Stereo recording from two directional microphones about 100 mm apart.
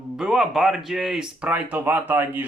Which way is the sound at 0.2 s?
5° right (ahead or behind).